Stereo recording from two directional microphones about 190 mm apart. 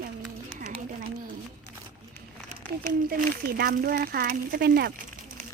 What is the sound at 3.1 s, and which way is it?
Speech, 50° right (ahead or behind).